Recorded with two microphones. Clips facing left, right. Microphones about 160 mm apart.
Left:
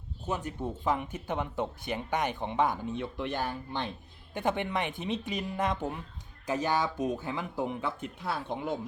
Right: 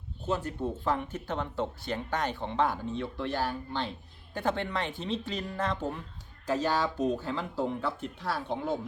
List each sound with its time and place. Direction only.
0.3 s speech: 15° left (ahead or behind)